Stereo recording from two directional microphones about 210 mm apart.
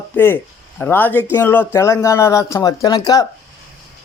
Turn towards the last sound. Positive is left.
turn(degrees=15)  # may be behind; listen again after turning